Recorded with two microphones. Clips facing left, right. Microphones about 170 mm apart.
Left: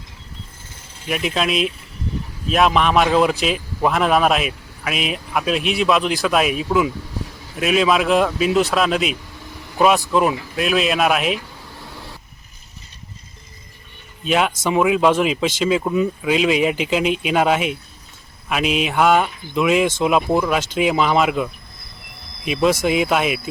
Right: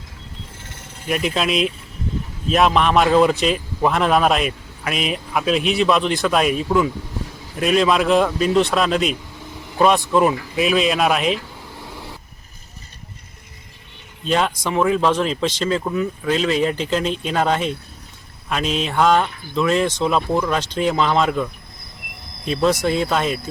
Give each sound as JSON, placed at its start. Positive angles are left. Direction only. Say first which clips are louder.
{"t": 1.0, "sound": "speech", "louder": "right 1 dB", "side_deg": 0}
{"t": 9.4, "sound": "vehicle", "louder": "right 2 dB", "side_deg": -20}
{"t": 10.1, "sound": "speech", "louder": "right 1 dB", "side_deg": 0}
{"t": 11.8, "sound": "vehicle", "louder": "right 2 dB", "side_deg": -15}
{"t": 14.3, "sound": "speech", "louder": "left 1 dB", "side_deg": 5}